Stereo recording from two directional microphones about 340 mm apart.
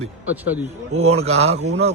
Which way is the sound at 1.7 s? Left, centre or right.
Right.